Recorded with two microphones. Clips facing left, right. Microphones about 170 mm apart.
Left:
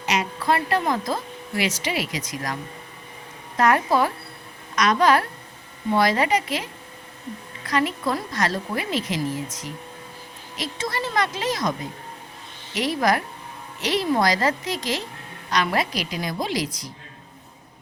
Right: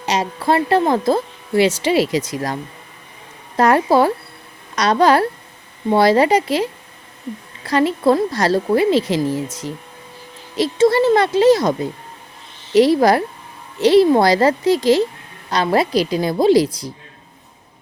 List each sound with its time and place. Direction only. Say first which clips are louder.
0.0 s speech: right 5 dB; 30° right (ahead or behind)
3.6 s a woman's voice: right 6 dB; 30° right (ahead or behind)
12.7 s a woman's voice: right 10 dB; 30° right (ahead or behind)